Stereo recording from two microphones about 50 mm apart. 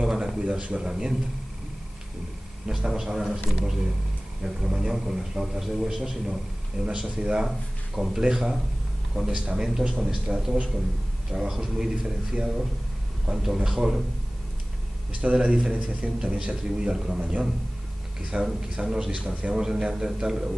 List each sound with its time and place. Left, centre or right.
0.0 s a sound: centre
0.4 s a man's voice: centre
2.7 s a man's voice: centre
4.4 s a man's voice: centre
10.3 s a man's voice: centre
15.3 s a man's voice: centre
19.6 s a man's voice: centre